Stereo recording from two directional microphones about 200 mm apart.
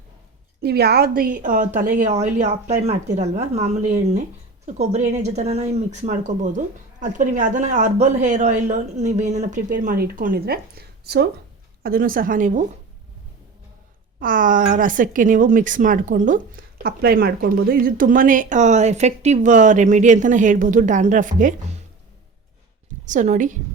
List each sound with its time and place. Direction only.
0.6 s a woman's voice: 55° right (ahead or behind)
14.2 s speech: 45° right (ahead or behind)
23.0 s speech: 40° right (ahead or behind)